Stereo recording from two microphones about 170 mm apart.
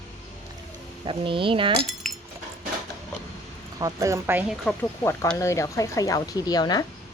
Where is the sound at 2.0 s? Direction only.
Centre (ahead or behind).